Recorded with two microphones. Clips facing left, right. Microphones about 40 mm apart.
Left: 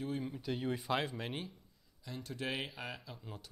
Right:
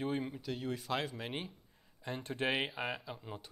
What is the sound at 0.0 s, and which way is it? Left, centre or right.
Speech, right.